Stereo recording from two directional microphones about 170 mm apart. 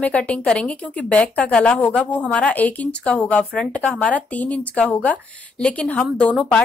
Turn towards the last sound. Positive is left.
turn(degrees=10)  # may be behind; listen again after turning